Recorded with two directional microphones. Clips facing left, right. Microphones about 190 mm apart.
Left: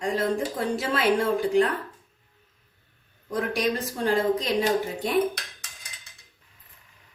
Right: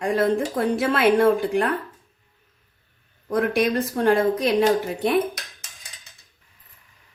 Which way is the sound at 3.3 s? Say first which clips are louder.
Right 5 dB; 60° right (ahead or behind).